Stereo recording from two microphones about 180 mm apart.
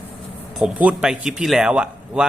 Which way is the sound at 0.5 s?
5° right (ahead or behind).